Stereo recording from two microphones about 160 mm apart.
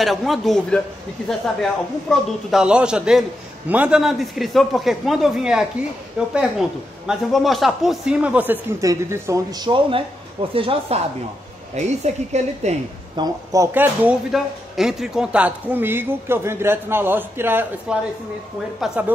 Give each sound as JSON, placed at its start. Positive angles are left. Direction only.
{"t": 0.0, "sound": "a man's voice", "side_deg": 0}
{"t": 13.1, "sound": "speech", "side_deg": -25}
{"t": 14.0, "sound": "speech", "side_deg": -5}